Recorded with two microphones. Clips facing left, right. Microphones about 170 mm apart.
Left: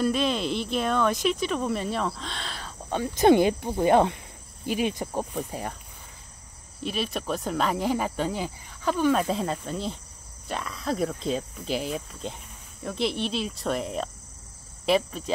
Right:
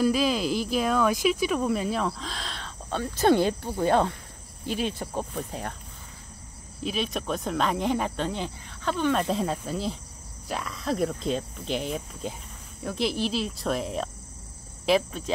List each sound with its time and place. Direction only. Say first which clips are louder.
0.0 s speech: right 1 dB; centre (ahead or behind)
2.9 s speech: left 3 dB; 15° left (ahead or behind)
6.8 s speech: even; centre (ahead or behind)